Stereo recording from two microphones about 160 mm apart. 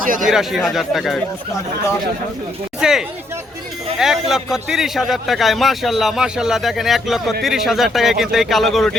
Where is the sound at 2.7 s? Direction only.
5° right (ahead or behind).